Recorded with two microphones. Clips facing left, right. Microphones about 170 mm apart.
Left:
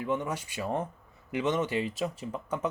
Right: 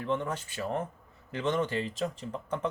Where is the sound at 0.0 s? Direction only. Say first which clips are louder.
Left 1 dB; 10° left (ahead or behind).